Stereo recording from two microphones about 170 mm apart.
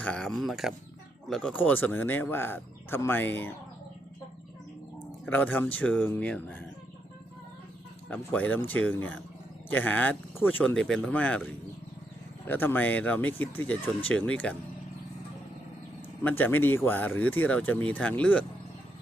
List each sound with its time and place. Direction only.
0.0 s speech: 5° left (ahead or behind)
5.2 s speech: 10° left (ahead or behind)
8.1 s speech: 10° left (ahead or behind)
16.2 s speech: 10° left (ahead or behind)